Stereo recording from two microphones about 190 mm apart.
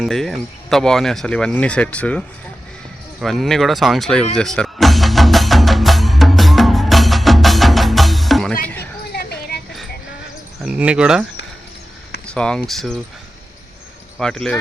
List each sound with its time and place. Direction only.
0.0 s speech: centre (ahead or behind)
4.4 s music: 5° left (ahead or behind)
9.1 s a sound: 55° left (ahead or behind)
10.6 s speech: 5° right (ahead or behind)
12.2 s speech: 5° left (ahead or behind)
14.2 s speech: 5° left (ahead or behind)